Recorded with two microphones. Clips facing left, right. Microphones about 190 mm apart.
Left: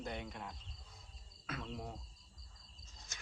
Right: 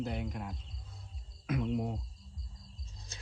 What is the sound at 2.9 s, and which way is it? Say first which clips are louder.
Cricket: right 2 dB; 30° right (ahead or behind).